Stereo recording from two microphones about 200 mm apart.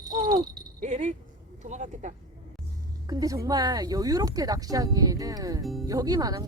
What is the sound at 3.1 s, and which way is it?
Speech, 15° right (ahead or behind).